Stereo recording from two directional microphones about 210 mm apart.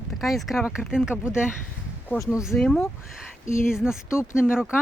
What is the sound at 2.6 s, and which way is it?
Speech, centre (ahead or behind).